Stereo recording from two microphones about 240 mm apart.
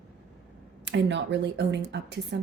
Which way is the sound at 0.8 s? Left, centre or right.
Right.